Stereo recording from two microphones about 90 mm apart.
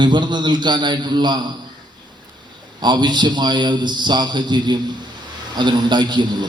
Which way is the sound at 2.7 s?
55° right (ahead or behind).